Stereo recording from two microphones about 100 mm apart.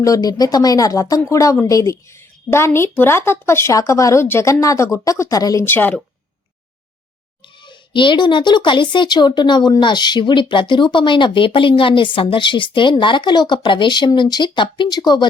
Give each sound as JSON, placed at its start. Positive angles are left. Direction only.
{"t": 0.0, "sound": "speech", "side_deg": 35}
{"t": 5.6, "sound": "a woman's voice", "side_deg": 20}
{"t": 7.4, "sound": "speech", "side_deg": 55}